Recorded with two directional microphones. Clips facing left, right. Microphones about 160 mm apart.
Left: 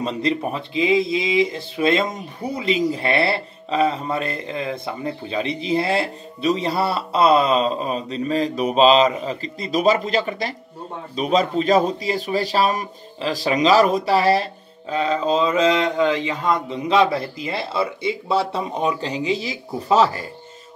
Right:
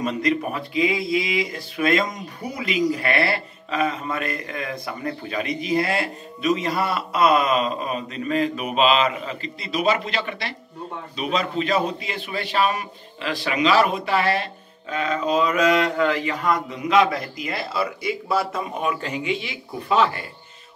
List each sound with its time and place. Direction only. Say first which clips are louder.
0.0 s a man's voice: even; 30° left (ahead or behind)